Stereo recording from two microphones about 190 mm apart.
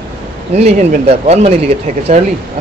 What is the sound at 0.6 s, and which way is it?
Speech, 35° right (ahead or behind).